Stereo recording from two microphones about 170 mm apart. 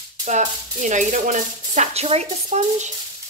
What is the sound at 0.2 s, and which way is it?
A woman's voice, 45° right (ahead or behind).